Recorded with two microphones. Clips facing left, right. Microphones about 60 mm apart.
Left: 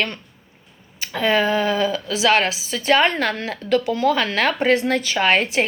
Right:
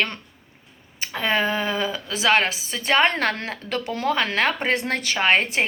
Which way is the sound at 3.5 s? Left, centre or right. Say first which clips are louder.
Left 7 dB; right.